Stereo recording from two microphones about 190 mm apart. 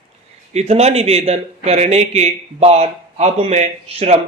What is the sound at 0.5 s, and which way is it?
A man's voice, 35° right (ahead or behind).